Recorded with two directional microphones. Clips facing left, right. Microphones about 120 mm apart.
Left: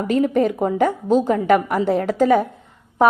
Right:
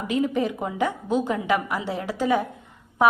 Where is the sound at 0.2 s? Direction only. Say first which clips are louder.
Left 6 dB; 45° left (ahead or behind).